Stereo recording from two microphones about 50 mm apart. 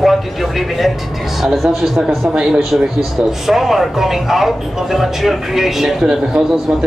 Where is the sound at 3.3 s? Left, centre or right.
Centre.